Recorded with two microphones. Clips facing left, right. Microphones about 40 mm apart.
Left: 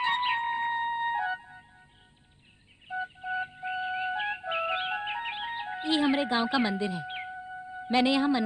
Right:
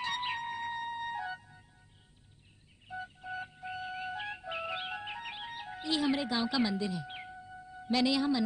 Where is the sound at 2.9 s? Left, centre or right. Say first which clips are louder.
Left 8 dB; left.